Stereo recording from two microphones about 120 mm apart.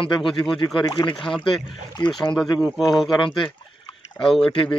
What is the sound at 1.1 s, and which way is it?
Speech, 5° left (ahead or behind).